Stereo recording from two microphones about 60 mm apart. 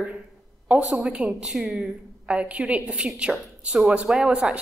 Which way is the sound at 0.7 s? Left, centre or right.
Right.